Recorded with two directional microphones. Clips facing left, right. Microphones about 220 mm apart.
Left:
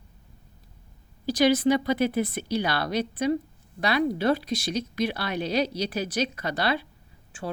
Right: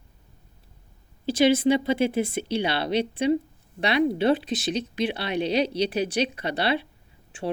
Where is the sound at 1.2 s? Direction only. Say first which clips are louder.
Right 1 dB; 25° right (ahead or behind).